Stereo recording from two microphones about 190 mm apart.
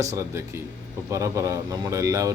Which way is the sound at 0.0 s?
15° right (ahead or behind).